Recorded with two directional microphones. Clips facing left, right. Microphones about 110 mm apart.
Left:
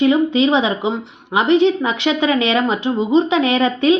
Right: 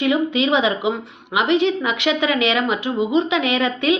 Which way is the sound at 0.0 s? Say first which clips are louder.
Left 5 dB; 30° left (ahead or behind).